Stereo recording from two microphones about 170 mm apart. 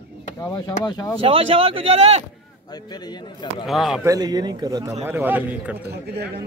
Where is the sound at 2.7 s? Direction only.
25° left (ahead or behind).